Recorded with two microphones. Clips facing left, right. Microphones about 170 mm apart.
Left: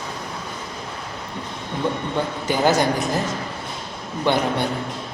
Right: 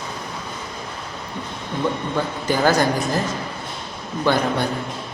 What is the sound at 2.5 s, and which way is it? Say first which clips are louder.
Speech: right 1 dB; 20° left (ahead or behind).